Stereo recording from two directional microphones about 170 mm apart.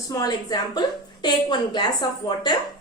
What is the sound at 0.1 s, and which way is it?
A woman's voice, 20° left (ahead or behind).